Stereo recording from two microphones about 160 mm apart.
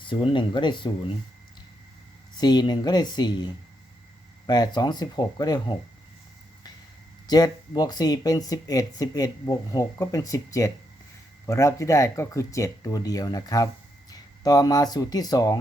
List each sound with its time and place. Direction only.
0.0 s speech: 30° left (ahead or behind)
2.4 s speech: 25° left (ahead or behind)
7.3 s speech: 25° left (ahead or behind)